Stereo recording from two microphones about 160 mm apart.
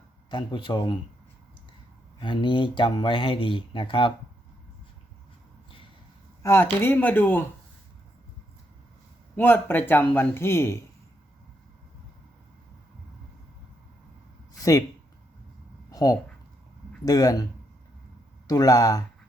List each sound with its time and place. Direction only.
0.3 s speech: 30° left (ahead or behind)
2.2 s speech: 30° left (ahead or behind)
6.4 s a man's voice: 15° left (ahead or behind)
9.3 s a man's voice: 10° left (ahead or behind)
14.6 s speech: 20° left (ahead or behind)
15.9 s a sound: 20° left (ahead or behind)
17.1 s speech: 25° left (ahead or behind)
18.4 s speech: 20° left (ahead or behind)